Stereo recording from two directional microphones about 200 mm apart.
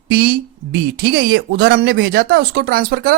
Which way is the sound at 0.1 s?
55° right (ahead or behind).